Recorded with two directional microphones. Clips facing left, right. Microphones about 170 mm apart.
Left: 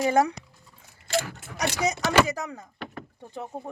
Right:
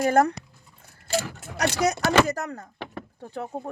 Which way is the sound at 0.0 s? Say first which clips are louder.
Right 2 dB; 55° right (ahead or behind).